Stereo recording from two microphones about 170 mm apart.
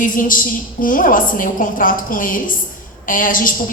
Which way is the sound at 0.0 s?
55° left (ahead or behind).